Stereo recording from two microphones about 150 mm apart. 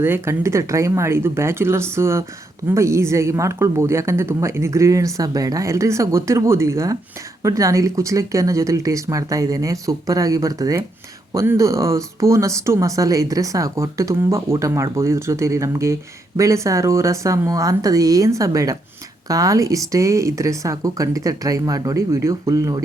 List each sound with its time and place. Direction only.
0.0 s speech: 15° right (ahead or behind)